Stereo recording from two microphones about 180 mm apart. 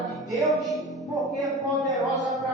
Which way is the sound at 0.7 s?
Centre (ahead or behind).